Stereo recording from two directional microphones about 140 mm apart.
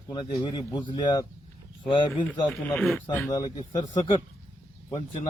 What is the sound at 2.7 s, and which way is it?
Speech, centre (ahead or behind).